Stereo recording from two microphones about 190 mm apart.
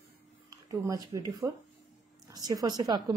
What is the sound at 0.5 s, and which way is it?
A woman's voice, 15° right (ahead or behind).